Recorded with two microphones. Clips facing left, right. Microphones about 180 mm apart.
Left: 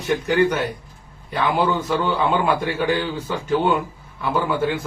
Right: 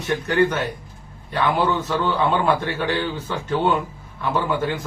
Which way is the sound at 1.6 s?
10° left (ahead or behind).